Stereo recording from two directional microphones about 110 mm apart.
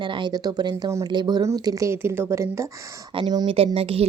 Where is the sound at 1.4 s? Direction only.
30° right (ahead or behind).